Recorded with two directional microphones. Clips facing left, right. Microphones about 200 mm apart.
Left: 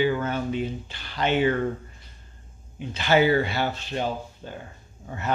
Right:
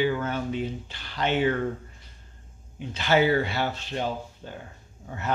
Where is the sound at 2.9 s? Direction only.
5° left (ahead or behind).